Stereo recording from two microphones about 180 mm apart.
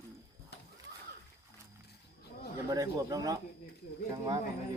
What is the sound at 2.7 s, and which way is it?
Speech, 20° right (ahead or behind).